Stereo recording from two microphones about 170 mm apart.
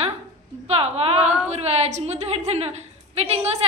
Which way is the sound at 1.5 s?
40° right (ahead or behind).